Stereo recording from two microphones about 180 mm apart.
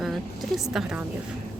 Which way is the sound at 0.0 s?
Centre (ahead or behind).